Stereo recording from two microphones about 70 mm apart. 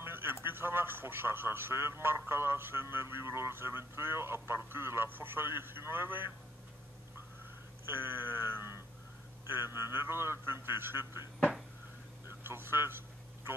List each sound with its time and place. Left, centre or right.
0.0 s a man's voice: right
7.8 s a sound: right
9.8 s a man's voice: right
12.3 s speech: right